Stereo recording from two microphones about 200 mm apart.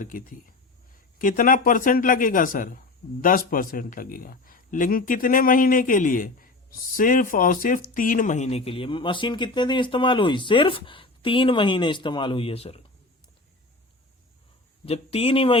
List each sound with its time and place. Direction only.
0.0 s a man's voice: 40° left (ahead or behind)
14.8 s speech: 30° left (ahead or behind)